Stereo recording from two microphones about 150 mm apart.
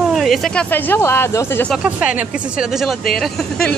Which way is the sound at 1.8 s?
10° right (ahead or behind).